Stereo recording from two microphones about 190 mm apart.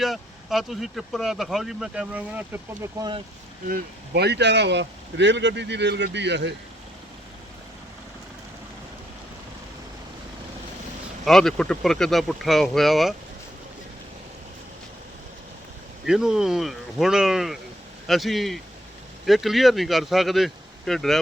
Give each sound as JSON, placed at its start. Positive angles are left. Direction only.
{"t": 0.0, "sound": "speech", "side_deg": 0}
{"t": 3.7, "sound": "speech", "side_deg": -60}
{"t": 11.3, "sound": "speech", "side_deg": 0}
{"t": 16.0, "sound": "speech", "side_deg": -5}